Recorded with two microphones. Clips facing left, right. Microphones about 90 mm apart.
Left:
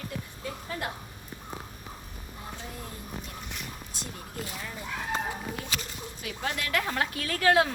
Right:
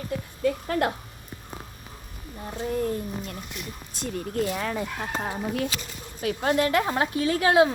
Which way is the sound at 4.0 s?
55° right (ahead or behind).